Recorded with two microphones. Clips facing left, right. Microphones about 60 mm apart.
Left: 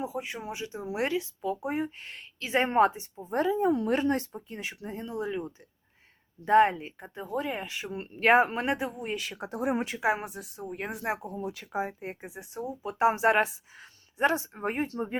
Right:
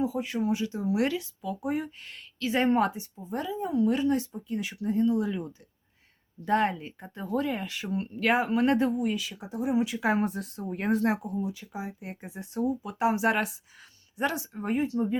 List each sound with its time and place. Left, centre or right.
0.0 s speech: left
4.4 s speech: left
6.4 s speech: left
8.6 s speech: centre
9.0 s speech: left
9.2 s speech: left
10.0 s speech: centre
11.0 s speech: left
11.3 s speech: left
12.3 s speech: centre; by 15.2 s left